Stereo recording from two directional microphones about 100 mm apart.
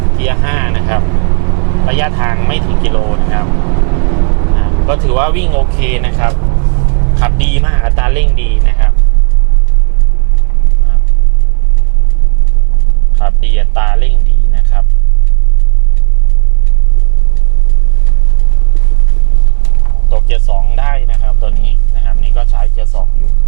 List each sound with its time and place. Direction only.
0.0 s speech: 15° right (ahead or behind)
13.1 s speech: 15° right (ahead or behind)
20.1 s speech: 15° right (ahead or behind)